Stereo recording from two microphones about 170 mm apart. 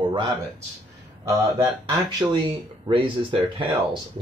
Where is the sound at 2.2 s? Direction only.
10° right (ahead or behind).